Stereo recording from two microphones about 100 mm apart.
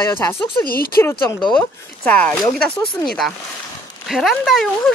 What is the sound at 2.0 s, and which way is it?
Speech, 15° left (ahead or behind).